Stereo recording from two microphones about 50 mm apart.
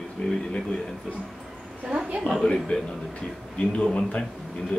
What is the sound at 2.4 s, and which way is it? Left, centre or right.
A man's voice, centre.